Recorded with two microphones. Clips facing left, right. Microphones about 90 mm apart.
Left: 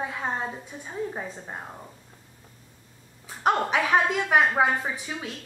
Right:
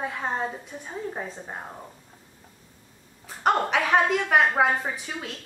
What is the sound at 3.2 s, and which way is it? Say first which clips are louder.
A woman's voice: right 1 dB; 5° left (ahead or behind).